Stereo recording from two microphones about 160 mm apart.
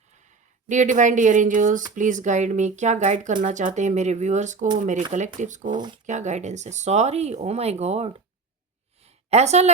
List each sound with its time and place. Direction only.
0.7 s speech: 50° right (ahead or behind)
5.7 s speech: 30° right (ahead or behind)
6.1 s a woman's voice: 50° right (ahead or behind)